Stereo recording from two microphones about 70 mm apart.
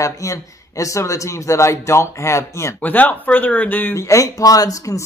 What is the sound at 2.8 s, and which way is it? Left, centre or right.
Speech, left.